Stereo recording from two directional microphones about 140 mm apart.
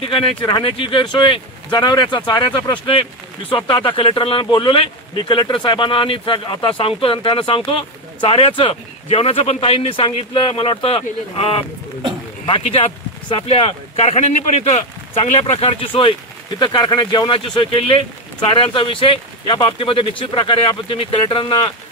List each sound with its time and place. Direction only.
0.5 s speech: 35° left (ahead or behind)